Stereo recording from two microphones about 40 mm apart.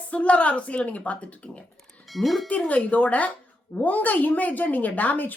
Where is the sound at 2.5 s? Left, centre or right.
Left.